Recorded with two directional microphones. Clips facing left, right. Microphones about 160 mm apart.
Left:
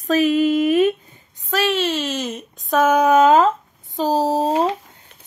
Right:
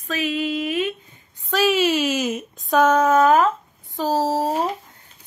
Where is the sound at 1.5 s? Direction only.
Centre (ahead or behind).